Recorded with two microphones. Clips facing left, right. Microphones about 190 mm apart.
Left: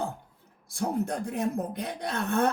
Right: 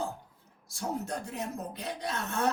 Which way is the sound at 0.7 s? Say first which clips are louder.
Left 5 dB; 55° left (ahead or behind).